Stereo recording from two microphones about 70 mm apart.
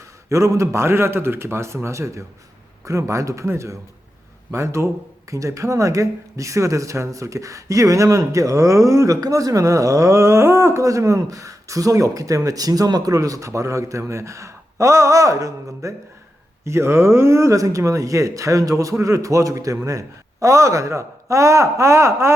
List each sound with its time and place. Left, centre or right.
0.3 s a man's voice: right
10.8 s speech: right